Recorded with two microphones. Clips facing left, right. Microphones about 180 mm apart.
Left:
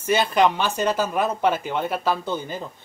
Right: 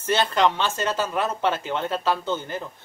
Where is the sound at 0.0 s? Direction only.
10° left (ahead or behind).